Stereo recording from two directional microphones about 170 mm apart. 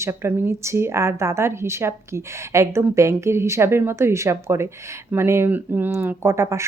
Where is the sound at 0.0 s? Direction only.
15° right (ahead or behind).